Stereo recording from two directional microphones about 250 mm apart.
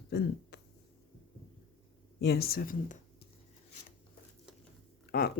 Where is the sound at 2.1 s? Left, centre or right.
Left.